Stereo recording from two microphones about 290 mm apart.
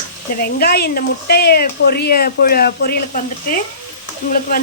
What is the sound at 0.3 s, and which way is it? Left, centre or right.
Speech, left.